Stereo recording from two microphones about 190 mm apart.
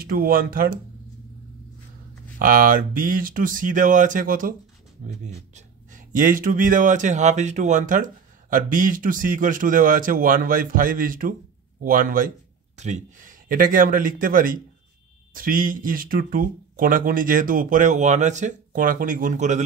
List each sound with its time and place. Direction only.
0.0 s speech: 50° right (ahead or behind)
2.3 s speech: 50° right (ahead or behind)